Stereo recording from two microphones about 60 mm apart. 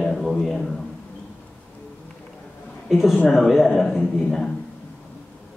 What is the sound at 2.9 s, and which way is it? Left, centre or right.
A man's voice, centre.